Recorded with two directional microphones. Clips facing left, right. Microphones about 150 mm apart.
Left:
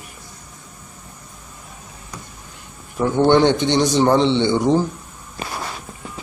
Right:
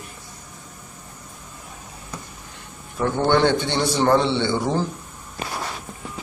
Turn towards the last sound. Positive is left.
turn(degrees=20)  # may be behind; listen again after turning